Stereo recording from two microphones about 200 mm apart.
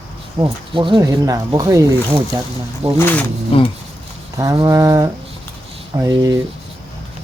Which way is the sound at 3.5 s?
30° left (ahead or behind).